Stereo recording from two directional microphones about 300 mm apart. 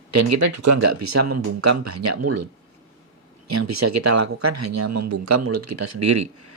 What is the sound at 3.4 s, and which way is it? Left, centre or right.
Speech, right.